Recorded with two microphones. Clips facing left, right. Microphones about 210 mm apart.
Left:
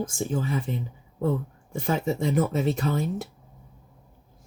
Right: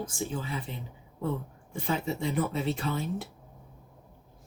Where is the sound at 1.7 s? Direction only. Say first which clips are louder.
Left 5 dB; 45° left (ahead or behind).